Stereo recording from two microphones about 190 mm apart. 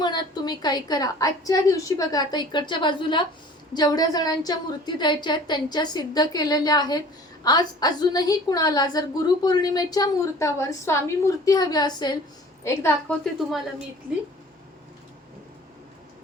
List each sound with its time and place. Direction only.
0.0 s a woman's voice: 20° left (ahead or behind)